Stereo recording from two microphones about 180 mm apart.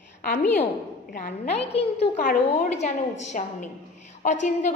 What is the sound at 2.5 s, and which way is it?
A woman's voice, 40° left (ahead or behind).